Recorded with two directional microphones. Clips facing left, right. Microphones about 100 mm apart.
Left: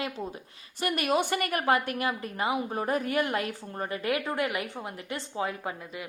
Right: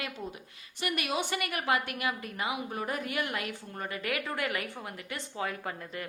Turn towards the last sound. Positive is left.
turn(degrees=15)  # may be behind; listen again after turning